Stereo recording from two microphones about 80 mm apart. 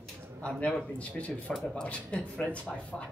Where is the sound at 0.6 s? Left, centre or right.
Centre.